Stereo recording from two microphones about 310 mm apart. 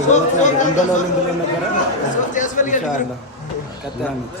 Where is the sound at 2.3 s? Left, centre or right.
Left.